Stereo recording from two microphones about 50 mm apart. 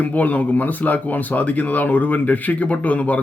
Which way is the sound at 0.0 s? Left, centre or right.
Left.